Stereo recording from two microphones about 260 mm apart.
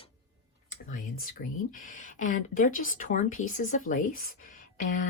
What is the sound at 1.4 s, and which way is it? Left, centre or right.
Speech, left.